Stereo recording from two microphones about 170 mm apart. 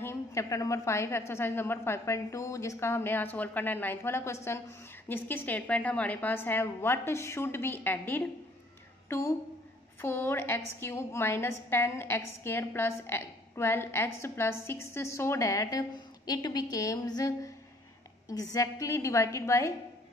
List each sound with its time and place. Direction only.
0.0 s a woman's voice: 15° left (ahead or behind)
10.0 s a woman's voice: 15° left (ahead or behind)